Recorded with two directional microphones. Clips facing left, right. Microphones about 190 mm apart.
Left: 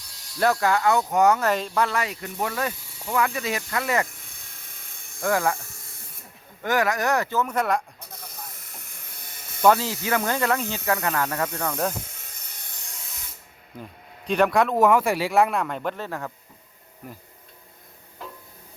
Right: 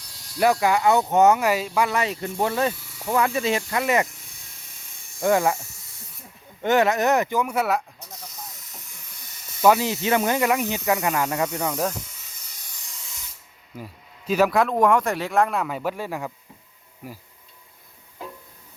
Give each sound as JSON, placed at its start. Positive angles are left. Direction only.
{"t": 0.3, "sound": "speech", "side_deg": -15}
{"t": 1.4, "sound": "speech", "side_deg": -10}
{"t": 2.0, "sound": "speech", "side_deg": -25}
{"t": 4.6, "sound": "helicopter", "side_deg": 55}
{"t": 5.2, "sound": "speech", "side_deg": -20}
{"t": 6.6, "sound": "speech", "side_deg": -25}
{"t": 9.6, "sound": "speech", "side_deg": -5}
{"t": 9.8, "sound": "speech", "side_deg": -20}
{"t": 12.2, "sound": "hiss", "side_deg": 55}
{"t": 13.7, "sound": "speech", "side_deg": -5}